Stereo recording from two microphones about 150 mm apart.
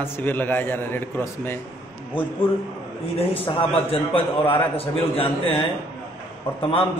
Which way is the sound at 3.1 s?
40° left (ahead or behind).